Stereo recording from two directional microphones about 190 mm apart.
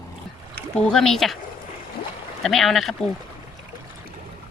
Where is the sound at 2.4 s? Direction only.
Centre (ahead or behind).